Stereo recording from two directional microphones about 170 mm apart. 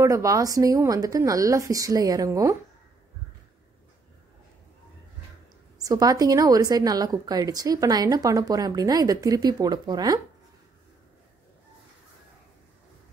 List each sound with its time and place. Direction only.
0.0 s a woman's voice: 20° right (ahead or behind)
5.9 s a woman's voice: 20° right (ahead or behind)